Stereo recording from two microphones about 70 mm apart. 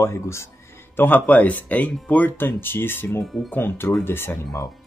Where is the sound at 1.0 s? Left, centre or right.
Left.